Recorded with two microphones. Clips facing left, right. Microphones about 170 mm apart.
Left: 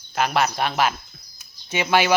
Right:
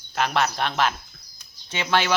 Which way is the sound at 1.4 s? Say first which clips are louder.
Left 5 dB; 10° left (ahead or behind).